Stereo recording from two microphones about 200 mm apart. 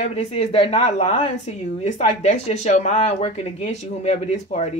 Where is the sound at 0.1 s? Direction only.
30° left (ahead or behind).